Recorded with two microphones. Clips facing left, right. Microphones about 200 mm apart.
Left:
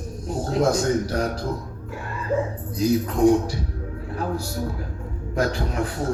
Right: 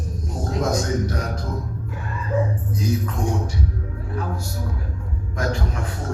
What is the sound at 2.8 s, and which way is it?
Speech, 35° left (ahead or behind).